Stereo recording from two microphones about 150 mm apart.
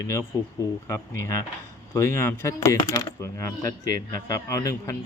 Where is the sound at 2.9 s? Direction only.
30° left (ahead or behind).